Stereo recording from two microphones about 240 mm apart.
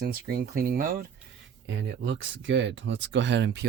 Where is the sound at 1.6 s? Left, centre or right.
Right.